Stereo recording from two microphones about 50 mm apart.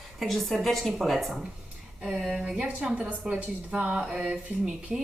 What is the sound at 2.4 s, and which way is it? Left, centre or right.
A woman's voice, right.